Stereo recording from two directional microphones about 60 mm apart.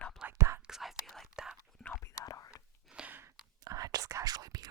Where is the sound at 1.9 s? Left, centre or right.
Left.